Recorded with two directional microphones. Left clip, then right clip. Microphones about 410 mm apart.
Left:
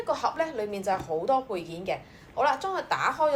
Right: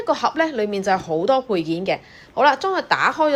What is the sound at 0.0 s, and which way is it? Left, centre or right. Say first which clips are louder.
A woman's voice: right 8 dB; centre.